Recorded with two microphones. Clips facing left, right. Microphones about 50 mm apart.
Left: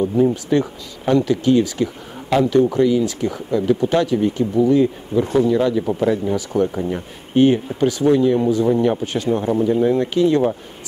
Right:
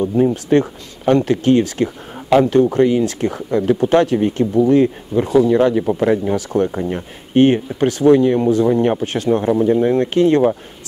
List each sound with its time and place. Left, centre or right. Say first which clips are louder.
0.0 s speech: right 1 dB; right
0.3 s speech: right 3 dB; right
4.8 s speech: right 1 dB; right
6.3 s speech: right 2 dB; right
6.7 s speech: right 1 dB; right
7.3 s speech: right 2 dB; right
9.3 s speech: right 4 dB; right
10.1 s speech: right 4 dB; right